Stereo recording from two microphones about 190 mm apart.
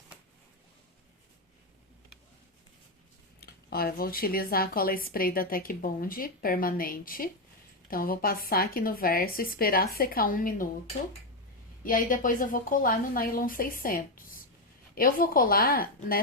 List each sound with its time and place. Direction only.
3.4 s speech: 55° left (ahead or behind)
11.8 s speech: 45° left (ahead or behind)